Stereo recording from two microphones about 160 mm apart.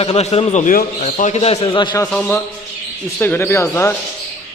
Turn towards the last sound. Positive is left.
turn(degrees=15)  # may be behind; listen again after turning